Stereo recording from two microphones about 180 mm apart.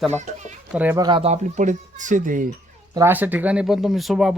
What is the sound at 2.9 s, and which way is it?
Speech, 10° right (ahead or behind).